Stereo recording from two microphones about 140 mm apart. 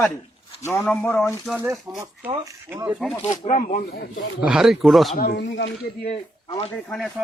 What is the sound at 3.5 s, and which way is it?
Speech, 55° left (ahead or behind).